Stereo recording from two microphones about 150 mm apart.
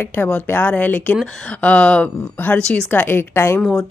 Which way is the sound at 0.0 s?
15° left (ahead or behind).